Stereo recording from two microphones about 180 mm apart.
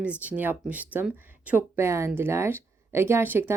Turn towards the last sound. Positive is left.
turn(degrees=-10)  # may be behind; listen again after turning